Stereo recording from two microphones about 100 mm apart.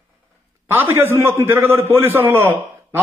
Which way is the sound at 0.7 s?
20° right (ahead or behind).